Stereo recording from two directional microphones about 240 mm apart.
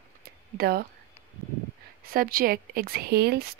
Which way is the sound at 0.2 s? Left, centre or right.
Right.